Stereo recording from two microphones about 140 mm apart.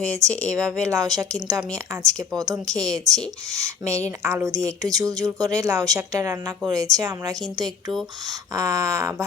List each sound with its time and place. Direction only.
0.1 s a woman's voice: 20° right (ahead or behind)